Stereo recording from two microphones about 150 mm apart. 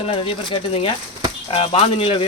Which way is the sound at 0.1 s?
40° left (ahead or behind).